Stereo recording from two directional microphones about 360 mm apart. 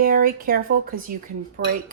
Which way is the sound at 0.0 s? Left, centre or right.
Right.